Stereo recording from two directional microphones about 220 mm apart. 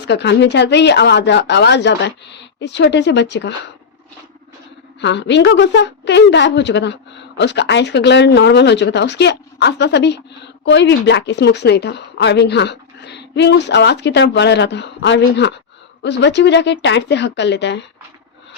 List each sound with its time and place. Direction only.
0.0 s a woman's voice: 50° left (ahead or behind)
4.9 s a woman's voice: 55° left (ahead or behind)